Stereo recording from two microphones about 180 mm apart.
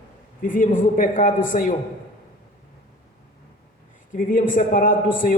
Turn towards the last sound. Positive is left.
turn(degrees=50)  # may be behind; listen again after turning